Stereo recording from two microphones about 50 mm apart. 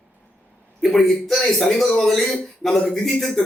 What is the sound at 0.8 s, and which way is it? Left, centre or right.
A man's voice, centre.